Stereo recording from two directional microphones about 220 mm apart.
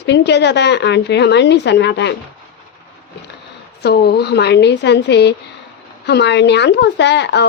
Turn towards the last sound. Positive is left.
turn(degrees=50)  # may be behind; listen again after turning